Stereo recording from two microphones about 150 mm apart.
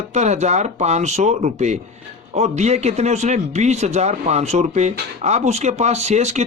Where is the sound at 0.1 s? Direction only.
50° right (ahead or behind).